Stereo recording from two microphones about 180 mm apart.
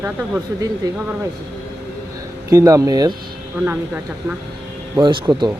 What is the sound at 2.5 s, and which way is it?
Speech, 15° right (ahead or behind).